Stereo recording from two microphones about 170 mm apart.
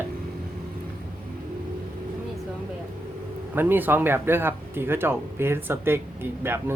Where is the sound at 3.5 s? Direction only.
10° right (ahead or behind).